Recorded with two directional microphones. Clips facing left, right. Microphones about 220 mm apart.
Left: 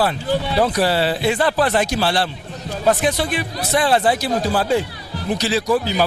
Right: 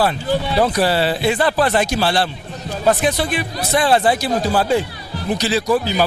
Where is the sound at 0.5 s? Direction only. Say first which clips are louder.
Right 1 dB; 15° right (ahead or behind).